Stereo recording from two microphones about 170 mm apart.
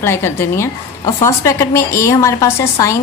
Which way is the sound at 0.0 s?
15° left (ahead or behind).